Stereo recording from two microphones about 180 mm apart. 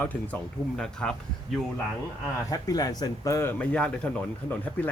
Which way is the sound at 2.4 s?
20° left (ahead or behind).